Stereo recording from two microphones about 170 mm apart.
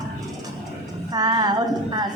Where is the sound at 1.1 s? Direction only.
25° right (ahead or behind).